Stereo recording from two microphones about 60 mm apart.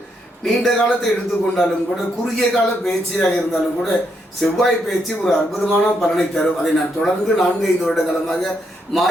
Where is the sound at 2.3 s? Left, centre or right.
Centre.